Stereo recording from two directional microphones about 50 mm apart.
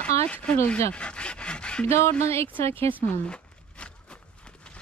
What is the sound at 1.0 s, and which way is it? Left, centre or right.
Dog, left.